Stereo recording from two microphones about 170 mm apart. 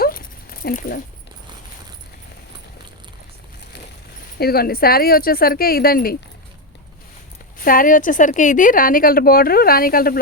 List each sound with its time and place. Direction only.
0.0 s a sound: 60° left (ahead or behind)
4.4 s a woman's voice: 65° left (ahead or behind)
7.6 s a woman's voice: 55° left (ahead or behind)